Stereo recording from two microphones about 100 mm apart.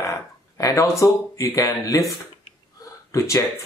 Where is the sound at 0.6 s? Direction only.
35° left (ahead or behind).